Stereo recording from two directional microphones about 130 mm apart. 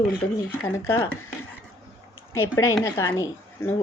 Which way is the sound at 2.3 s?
20° left (ahead or behind).